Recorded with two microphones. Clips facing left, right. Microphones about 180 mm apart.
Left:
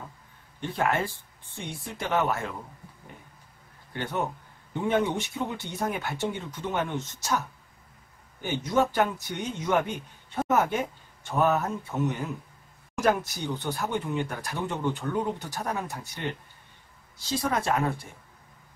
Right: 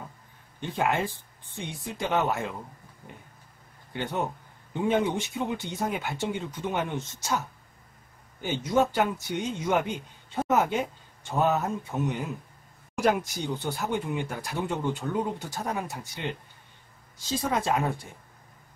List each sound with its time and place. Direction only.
0.6 s speech: 15° right (ahead or behind)
3.9 s a man's voice: 15° right (ahead or behind)
17.4 s speech: 15° right (ahead or behind)